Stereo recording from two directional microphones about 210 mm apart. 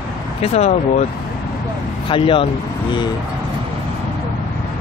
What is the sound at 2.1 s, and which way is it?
Speech, 25° left (ahead or behind).